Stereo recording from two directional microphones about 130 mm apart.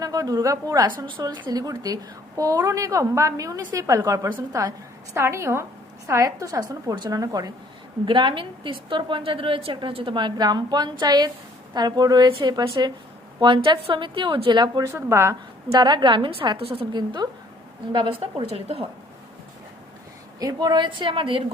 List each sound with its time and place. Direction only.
0.0 s a woman's voice: 30° right (ahead or behind)
14.9 s a woman's voice: 20° right (ahead or behind)
15.7 s a woman's voice: 35° right (ahead or behind); by 18.9 s 50° right (ahead or behind)
20.4 s a woman's voice: 30° right (ahead or behind)